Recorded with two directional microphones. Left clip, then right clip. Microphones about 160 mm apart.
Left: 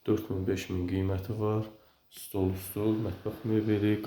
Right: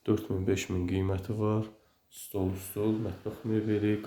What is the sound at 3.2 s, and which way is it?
Speech, 10° left (ahead or behind).